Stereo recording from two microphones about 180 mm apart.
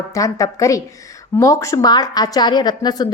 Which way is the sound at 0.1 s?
20° left (ahead or behind).